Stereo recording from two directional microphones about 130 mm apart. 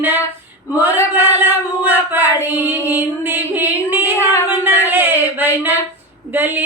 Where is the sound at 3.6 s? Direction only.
15° right (ahead or behind).